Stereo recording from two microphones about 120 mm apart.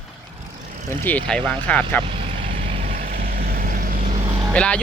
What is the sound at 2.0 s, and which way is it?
Vehicle, 50° right (ahead or behind).